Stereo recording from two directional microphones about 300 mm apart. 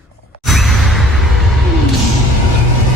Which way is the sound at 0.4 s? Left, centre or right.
Centre.